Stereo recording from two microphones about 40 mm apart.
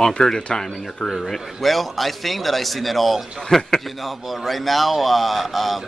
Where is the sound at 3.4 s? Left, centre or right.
Centre.